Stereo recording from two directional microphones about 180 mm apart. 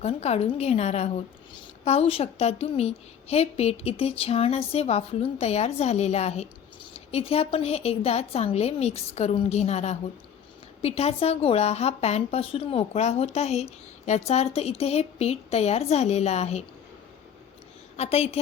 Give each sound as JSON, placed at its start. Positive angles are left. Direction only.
{"t": 0.0, "sound": "a woman's voice", "side_deg": 35}
{"t": 17.9, "sound": "a woman's voice", "side_deg": 35}